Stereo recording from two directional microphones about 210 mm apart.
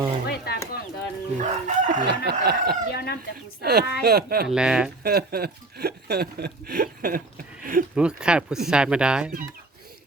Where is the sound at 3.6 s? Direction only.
50° right (ahead or behind).